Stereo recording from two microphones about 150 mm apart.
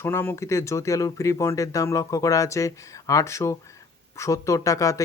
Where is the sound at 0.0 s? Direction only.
15° left (ahead or behind).